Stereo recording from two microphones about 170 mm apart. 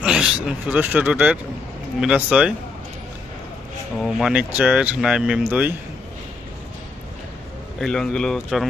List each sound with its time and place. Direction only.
0.0 s speech: 5° right (ahead or behind)
4.0 s speech: 5° right (ahead or behind)
7.8 s speech: 5° left (ahead or behind)